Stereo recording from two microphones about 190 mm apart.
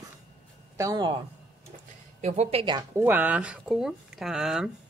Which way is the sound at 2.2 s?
35° right (ahead or behind).